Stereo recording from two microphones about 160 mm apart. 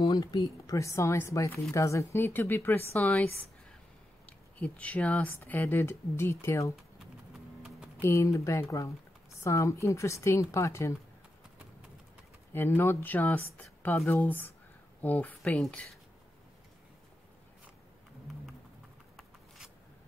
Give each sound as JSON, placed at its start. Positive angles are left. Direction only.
{"t": 0.0, "sound": "speech", "side_deg": 25}
{"t": 4.3, "sound": "speech", "side_deg": 10}
{"t": 8.0, "sound": "speech", "side_deg": 20}
{"t": 12.5, "sound": "speech", "side_deg": 15}